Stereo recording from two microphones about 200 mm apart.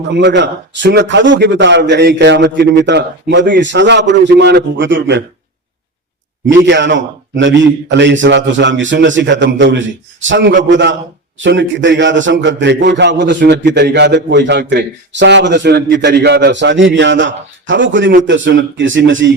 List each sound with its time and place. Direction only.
0.1 s a man's voice: 60° right (ahead or behind)
6.5 s a man's voice: 60° right (ahead or behind)